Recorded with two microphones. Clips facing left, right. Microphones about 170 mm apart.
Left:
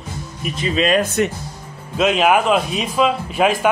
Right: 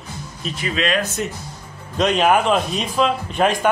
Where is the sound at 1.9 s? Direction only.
5° left (ahead or behind).